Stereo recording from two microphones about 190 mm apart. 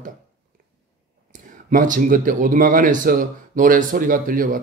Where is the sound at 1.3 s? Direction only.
40° right (ahead or behind).